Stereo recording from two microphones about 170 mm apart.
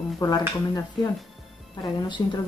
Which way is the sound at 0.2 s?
20° left (ahead or behind).